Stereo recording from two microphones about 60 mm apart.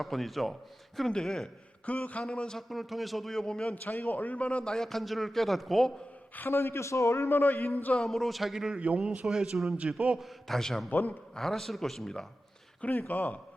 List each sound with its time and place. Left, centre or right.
0.0 s a man's voice: centre
1.9 s a man's voice: left
2.6 s a man's voice: centre
3.8 s a man's voice: left; by 5.9 s centre
6.3 s a man's voice: left
7.3 s a man's voice: left
7.9 s a man's voice: centre
9.2 s a man's voice: centre
10.2 s a man's voice: centre
10.8 s speech: left
11.3 s a man's voice: centre
12.8 s speech: left